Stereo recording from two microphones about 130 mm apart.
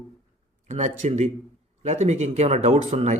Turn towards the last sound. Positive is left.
turn(degrees=-60)  # may be behind; listen again after turning